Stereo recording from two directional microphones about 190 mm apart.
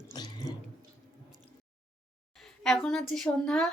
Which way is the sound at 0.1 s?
20° left (ahead or behind).